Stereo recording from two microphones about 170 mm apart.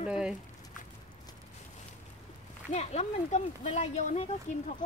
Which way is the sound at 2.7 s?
40° left (ahead or behind).